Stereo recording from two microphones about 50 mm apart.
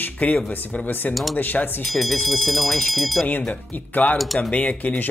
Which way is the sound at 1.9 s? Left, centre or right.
Centre.